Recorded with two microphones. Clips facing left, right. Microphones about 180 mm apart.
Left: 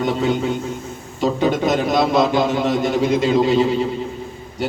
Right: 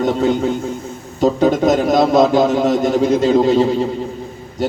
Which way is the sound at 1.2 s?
40° right (ahead or behind).